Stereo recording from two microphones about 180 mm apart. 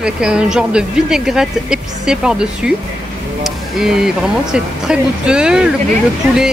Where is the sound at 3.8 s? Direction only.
5° right (ahead or behind).